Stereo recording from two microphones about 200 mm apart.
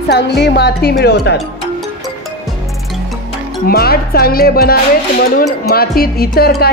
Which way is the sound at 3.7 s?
50° left (ahead or behind).